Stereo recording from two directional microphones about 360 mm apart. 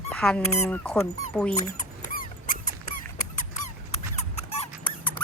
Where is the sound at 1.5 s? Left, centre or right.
Left.